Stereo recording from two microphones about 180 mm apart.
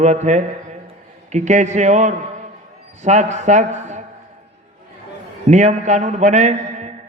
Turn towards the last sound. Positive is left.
turn(degrees=-40)  # may be behind; listen again after turning